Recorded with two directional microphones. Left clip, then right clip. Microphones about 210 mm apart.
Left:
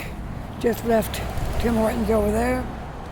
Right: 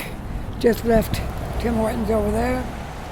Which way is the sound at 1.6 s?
15° left (ahead or behind).